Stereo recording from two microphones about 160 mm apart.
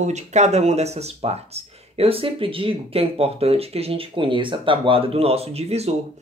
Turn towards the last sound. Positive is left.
turn(degrees=-40)  # may be behind; listen again after turning